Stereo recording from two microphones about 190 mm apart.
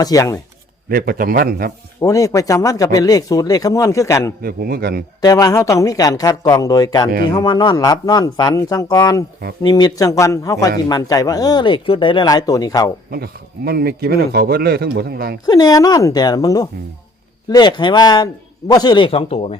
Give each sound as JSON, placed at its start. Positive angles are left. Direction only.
{"t": 0.0, "sound": "speech", "side_deg": 20}
{"t": 0.9, "sound": "a man's voice", "side_deg": -50}
{"t": 2.0, "sound": "speech", "side_deg": 15}
{"t": 4.4, "sound": "a man's voice", "side_deg": -50}
{"t": 5.2, "sound": "speech", "side_deg": 20}
{"t": 13.1, "sound": "speech", "side_deg": -55}
{"t": 15.4, "sound": "speech", "side_deg": 20}